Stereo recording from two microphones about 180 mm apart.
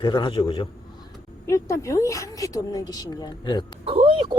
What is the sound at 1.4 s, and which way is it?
A woman's voice, 15° left (ahead or behind).